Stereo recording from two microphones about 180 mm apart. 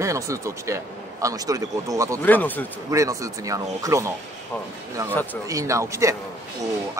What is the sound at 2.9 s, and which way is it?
Speech, 20° right (ahead or behind).